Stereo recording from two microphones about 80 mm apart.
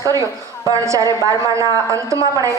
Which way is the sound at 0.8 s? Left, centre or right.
Right.